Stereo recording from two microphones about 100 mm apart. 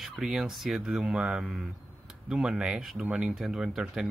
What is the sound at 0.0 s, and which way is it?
Speech, 5° right (ahead or behind).